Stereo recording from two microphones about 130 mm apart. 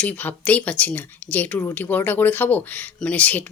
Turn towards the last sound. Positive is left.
turn(degrees=10)  # may be behind; listen again after turning